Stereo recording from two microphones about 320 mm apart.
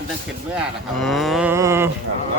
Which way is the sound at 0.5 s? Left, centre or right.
Centre.